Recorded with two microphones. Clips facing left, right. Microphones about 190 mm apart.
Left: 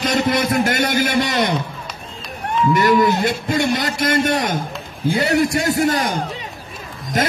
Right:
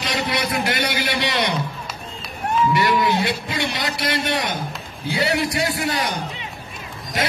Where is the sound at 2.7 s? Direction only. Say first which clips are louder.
Left 8 dB; 45° left (ahead or behind).